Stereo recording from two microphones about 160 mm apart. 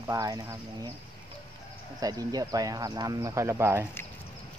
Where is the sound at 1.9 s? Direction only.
25° right (ahead or behind).